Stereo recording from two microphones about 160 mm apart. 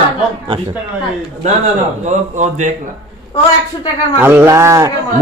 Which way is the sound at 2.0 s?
50° right (ahead or behind).